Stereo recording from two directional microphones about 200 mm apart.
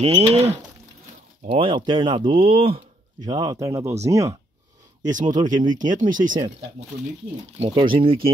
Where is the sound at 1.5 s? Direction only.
25° right (ahead or behind).